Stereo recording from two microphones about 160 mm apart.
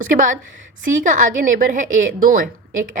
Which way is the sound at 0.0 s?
55° right (ahead or behind).